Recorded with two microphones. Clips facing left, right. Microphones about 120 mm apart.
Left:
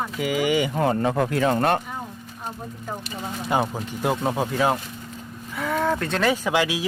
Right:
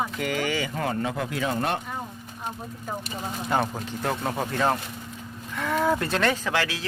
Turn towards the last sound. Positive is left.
turn(degrees=15)  # may be behind; listen again after turning